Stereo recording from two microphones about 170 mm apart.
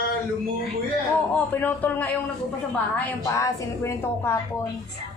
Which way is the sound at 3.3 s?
20° left (ahead or behind).